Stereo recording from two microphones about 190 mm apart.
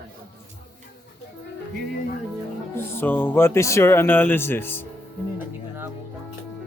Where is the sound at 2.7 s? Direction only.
10° left (ahead or behind).